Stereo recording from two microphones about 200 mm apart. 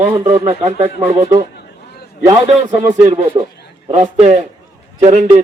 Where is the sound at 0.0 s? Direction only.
25° right (ahead or behind).